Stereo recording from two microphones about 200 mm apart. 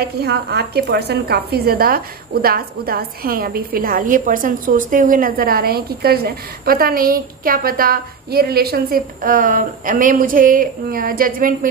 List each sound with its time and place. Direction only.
0.2 s a woman's voice: 55° right (ahead or behind)